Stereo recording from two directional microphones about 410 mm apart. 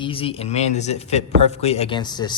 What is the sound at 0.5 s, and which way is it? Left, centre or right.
Speech, centre.